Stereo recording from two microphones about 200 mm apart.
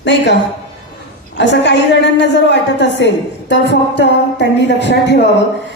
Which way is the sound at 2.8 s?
60° left (ahead or behind).